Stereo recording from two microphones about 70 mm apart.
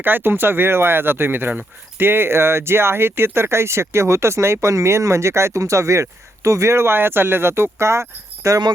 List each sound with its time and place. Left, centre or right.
0.0 s speech: right
8.4 s speech: right